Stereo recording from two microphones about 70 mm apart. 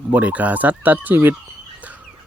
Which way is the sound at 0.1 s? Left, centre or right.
Right.